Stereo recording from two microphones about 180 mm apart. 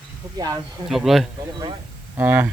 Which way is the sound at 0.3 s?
20° right (ahead or behind).